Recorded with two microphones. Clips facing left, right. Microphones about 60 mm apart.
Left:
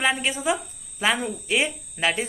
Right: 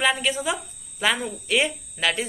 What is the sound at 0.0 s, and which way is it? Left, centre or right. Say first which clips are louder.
A man's voice: right 1 dB; left.